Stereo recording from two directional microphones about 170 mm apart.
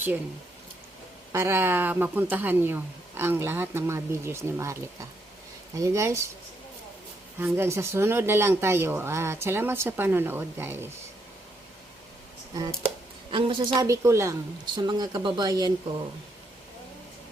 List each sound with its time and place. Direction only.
1.3 s speech: 15° right (ahead or behind)
7.3 s speech: 15° right (ahead or behind)
13.3 s speech: 30° right (ahead or behind)
13.8 s speech: 20° right (ahead or behind)